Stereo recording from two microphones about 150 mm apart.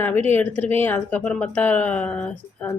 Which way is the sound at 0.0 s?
15° left (ahead or behind).